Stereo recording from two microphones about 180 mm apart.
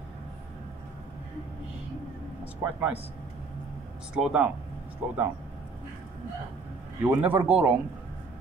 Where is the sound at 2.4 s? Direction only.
10° right (ahead or behind).